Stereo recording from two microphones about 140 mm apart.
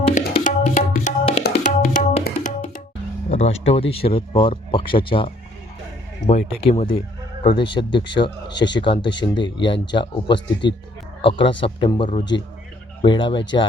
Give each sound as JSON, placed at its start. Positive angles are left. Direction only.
{"t": 0.1, "sound": "tabla", "side_deg": 65}
{"t": 2.2, "sound": "tabla", "side_deg": 65}
{"t": 3.2, "sound": "speech", "side_deg": 50}
{"t": 7.4, "sound": "speech", "side_deg": 35}